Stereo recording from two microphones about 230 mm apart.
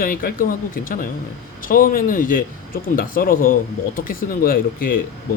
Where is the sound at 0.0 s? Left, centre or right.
Left.